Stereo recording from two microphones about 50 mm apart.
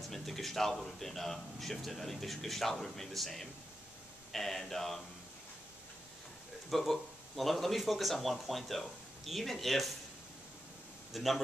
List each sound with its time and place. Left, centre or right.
0.1 s speech: centre
6.7 s speech: centre
11.1 s speech: centre